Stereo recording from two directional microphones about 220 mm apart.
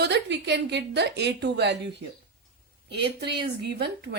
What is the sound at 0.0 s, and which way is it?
Speech, 50° right (ahead or behind).